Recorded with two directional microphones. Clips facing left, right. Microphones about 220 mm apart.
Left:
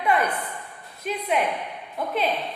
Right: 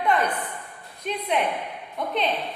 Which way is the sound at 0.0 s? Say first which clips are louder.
Even; 10° left (ahead or behind).